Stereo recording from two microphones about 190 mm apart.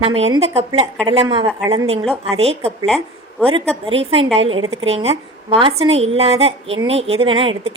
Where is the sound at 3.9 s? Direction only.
30° right (ahead or behind).